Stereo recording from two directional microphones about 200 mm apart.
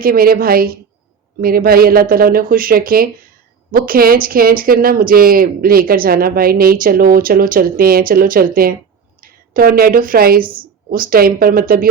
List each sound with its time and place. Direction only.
0.0 s a woman's voice: 45° right (ahead or behind)